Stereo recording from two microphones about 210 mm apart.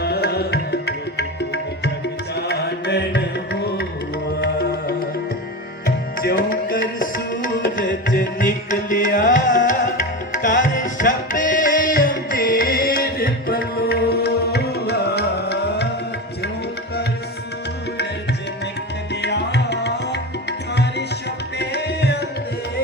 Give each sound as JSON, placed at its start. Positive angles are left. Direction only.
{"t": 0.0, "sound": "music", "side_deg": 50}
{"t": 19.2, "sound": "tabla", "side_deg": 55}
{"t": 21.6, "sound": "tabla", "side_deg": 50}